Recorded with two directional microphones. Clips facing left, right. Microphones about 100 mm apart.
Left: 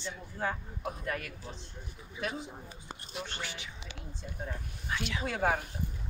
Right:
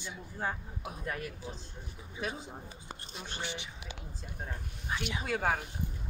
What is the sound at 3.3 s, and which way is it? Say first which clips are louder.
Speech: right 2 dB; 20° right (ahead or behind).